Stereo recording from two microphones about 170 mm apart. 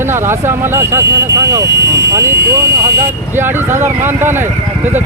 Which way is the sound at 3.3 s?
15° right (ahead or behind).